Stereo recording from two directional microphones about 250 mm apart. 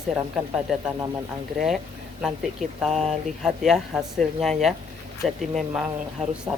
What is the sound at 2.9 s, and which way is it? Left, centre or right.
Speech, right.